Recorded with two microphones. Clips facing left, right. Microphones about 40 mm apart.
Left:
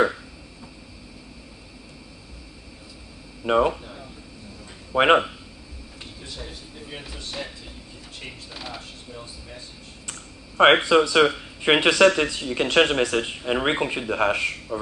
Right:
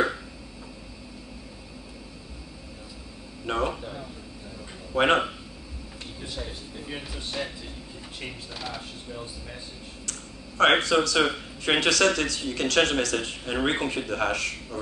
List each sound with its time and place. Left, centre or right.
3.4 s speech: centre
3.7 s speech: centre
4.9 s speech: left
6.2 s speech: centre
10.6 s speech: centre